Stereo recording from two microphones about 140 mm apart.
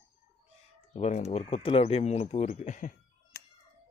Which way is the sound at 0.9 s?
50° left (ahead or behind).